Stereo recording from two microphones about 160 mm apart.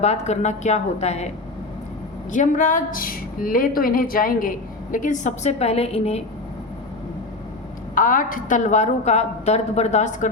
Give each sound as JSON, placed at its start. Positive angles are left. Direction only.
{"t": 0.0, "sound": "a woman's voice", "side_deg": 45}
{"t": 2.3, "sound": "speech", "side_deg": 50}
{"t": 7.9, "sound": "a woman's voice", "side_deg": 55}